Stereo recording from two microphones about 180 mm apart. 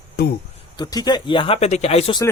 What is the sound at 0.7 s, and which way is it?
Speech, 20° left (ahead or behind).